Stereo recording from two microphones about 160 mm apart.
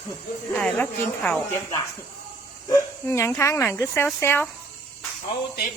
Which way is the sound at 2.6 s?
20° left (ahead or behind).